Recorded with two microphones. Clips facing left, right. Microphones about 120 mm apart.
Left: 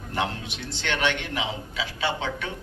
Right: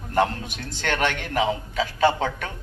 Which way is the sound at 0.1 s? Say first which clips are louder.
Right 6 dB; 45° right (ahead or behind).